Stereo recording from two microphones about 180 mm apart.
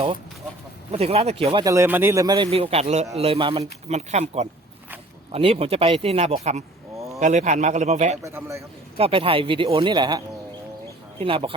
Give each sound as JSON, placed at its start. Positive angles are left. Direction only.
{"t": 0.9, "sound": "speech", "side_deg": -35}
{"t": 1.6, "sound": "a man's voice", "side_deg": -15}
{"t": 8.2, "sound": "a man's voice", "side_deg": -15}
{"t": 9.0, "sound": "a man's voice", "side_deg": -30}